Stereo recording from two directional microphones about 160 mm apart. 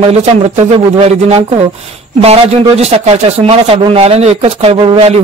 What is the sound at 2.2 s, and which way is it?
Speech, 40° right (ahead or behind).